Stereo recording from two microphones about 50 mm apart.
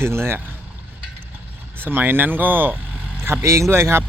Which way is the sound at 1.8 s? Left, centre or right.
Right.